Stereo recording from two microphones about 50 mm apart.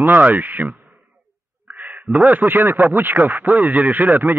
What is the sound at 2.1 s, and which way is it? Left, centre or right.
A man's voice, right.